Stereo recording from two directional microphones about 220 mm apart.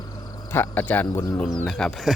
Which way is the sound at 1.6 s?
Centre (ahead or behind).